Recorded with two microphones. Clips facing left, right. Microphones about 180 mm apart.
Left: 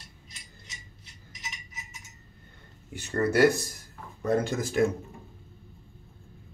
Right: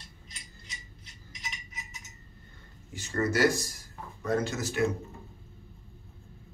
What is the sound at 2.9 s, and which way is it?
Speech, 60° left (ahead or behind).